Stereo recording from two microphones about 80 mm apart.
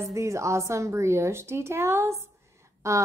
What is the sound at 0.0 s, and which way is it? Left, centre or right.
A woman's voice, right.